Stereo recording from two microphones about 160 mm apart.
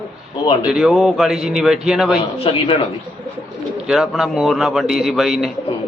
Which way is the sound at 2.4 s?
35° left (ahead or behind).